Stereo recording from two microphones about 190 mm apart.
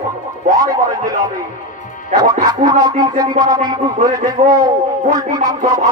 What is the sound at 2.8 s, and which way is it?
A man's voice, 20° right (ahead or behind).